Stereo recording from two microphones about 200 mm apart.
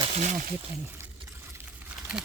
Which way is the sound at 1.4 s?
10° right (ahead or behind).